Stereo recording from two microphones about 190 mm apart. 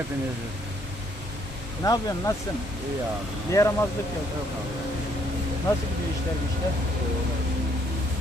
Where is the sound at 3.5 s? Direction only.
15° left (ahead or behind).